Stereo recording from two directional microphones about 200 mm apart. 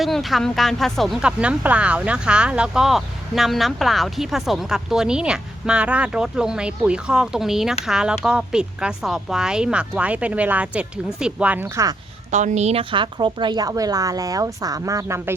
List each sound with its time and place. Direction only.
0.0 s speech: centre (ahead or behind)
12.3 s a woman's voice: 35° right (ahead or behind); by 15.4 s 15° right (ahead or behind)